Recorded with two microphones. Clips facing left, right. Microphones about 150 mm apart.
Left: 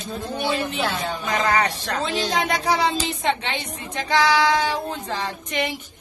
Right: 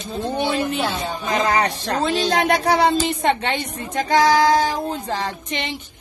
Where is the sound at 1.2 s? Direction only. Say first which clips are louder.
Right 2 dB; 30° right (ahead or behind).